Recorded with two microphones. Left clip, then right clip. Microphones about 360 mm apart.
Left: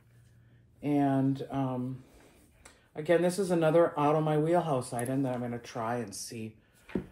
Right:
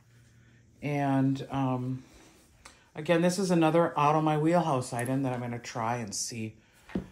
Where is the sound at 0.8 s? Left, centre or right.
Right.